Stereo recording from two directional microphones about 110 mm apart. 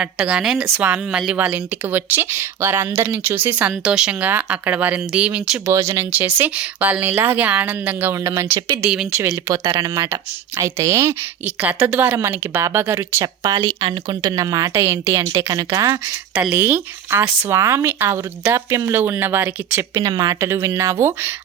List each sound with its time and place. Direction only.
0.0 s speech: 10° right (ahead or behind)
5.6 s speech: 25° right (ahead or behind)
8.8 s speech: 10° right (ahead or behind)
9.9 s speech: 25° right (ahead or behind)
11.4 s speech: 15° right (ahead or behind)
13.2 s speech: 35° right (ahead or behind)
13.6 s speech: 50° right (ahead or behind)
14.7 s speech: 20° right (ahead or behind)
16.5 s speech: 15° right (ahead or behind)
20.0 s speech: 35° right (ahead or behind)